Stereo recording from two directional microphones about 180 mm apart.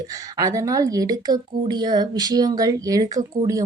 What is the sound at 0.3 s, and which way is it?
Speech, 20° right (ahead or behind).